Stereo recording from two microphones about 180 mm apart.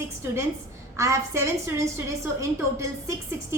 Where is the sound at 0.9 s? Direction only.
15° right (ahead or behind).